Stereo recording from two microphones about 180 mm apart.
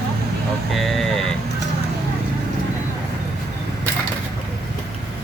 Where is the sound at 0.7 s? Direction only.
Centre (ahead or behind).